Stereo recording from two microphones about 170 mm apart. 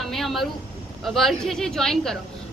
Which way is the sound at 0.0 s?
Centre (ahead or behind).